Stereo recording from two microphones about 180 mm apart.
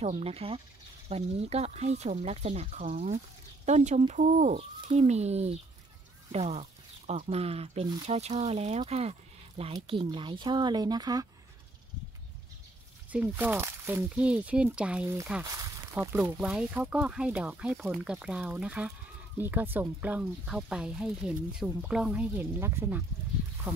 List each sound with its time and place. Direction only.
0.0 s speech: 35° right (ahead or behind)
13.1 s speech: 10° right (ahead or behind)
15.4 s speech: 20° right (ahead or behind)